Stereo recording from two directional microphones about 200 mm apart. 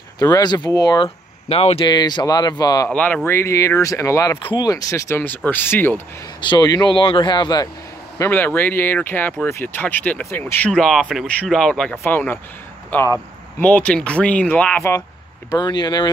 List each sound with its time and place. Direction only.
0.2 s speech: 20° left (ahead or behind)
2.9 s speech: 5° left (ahead or behind)
6.4 s speech: 20° left (ahead or behind)
8.2 s speech: 10° left (ahead or behind)
15.5 s speech: 20° left (ahead or behind)